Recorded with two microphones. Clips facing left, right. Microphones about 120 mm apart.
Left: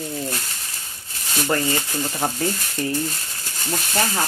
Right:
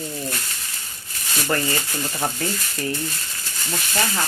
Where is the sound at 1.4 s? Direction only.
15° left (ahead or behind).